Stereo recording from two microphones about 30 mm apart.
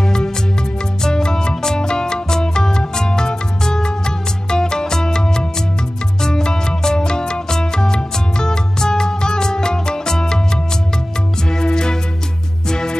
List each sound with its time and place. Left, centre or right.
0.0 s music: left
11.5 s music: left